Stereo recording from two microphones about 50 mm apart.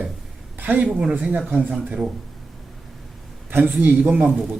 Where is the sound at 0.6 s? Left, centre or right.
Right.